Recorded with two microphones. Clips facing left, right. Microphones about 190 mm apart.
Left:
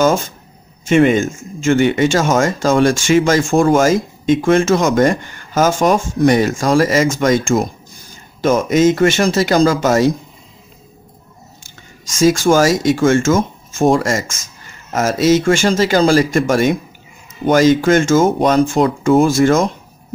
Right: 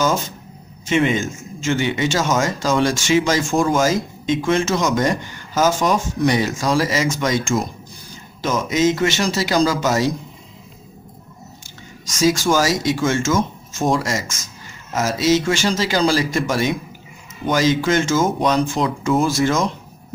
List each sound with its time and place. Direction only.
0.8 s speech: 50° left (ahead or behind)
12.2 s speech: 50° left (ahead or behind)